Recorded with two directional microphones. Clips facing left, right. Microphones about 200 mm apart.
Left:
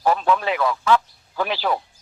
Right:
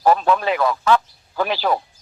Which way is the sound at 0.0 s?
40° right (ahead or behind).